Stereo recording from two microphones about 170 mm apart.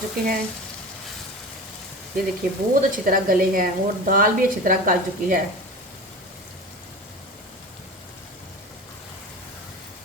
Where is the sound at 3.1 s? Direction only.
55° right (ahead or behind).